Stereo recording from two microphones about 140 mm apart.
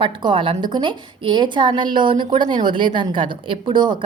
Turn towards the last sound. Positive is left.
turn(degrees=-35)  # may be behind; listen again after turning